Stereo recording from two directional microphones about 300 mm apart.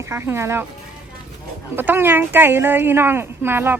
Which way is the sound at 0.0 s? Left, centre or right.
Centre.